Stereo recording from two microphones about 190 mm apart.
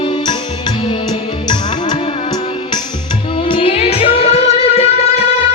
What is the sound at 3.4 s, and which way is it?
Music, 30° left (ahead or behind).